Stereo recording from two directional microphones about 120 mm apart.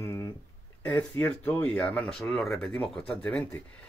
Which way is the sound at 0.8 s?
15° left (ahead or behind).